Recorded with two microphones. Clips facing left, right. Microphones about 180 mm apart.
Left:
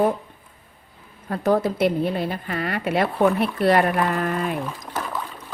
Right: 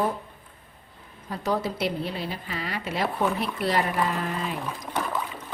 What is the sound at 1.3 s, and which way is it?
A woman's voice, 55° left (ahead or behind).